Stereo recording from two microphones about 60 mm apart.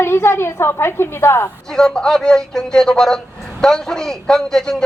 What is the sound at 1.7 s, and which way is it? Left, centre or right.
A man's voice, centre.